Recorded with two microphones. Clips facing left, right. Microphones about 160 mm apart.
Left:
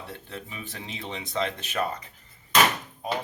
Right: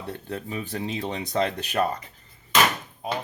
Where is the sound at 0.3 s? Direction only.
40° right (ahead or behind).